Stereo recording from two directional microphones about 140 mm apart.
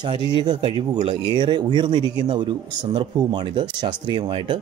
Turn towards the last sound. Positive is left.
turn(degrees=-35)  # may be behind; listen again after turning